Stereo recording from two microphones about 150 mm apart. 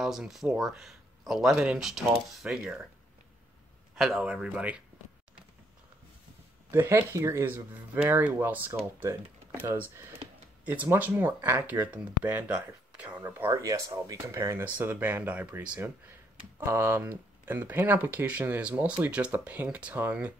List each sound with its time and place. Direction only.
0.0 s speech: centre (ahead or behind)
3.9 s speech: centre (ahead or behind)
6.7 s speech: 15° right (ahead or behind)
13.2 s speech: 20° right (ahead or behind)